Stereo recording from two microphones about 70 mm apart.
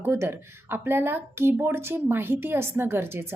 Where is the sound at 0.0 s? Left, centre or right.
Right.